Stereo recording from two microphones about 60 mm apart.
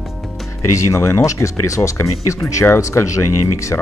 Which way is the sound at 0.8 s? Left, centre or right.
Left.